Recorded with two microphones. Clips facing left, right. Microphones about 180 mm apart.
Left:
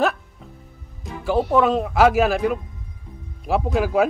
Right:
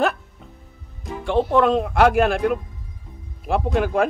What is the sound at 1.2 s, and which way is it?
A man's voice, 5° left (ahead or behind).